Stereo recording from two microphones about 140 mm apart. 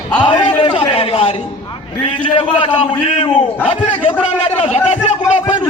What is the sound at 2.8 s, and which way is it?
A man's voice, 45° left (ahead or behind).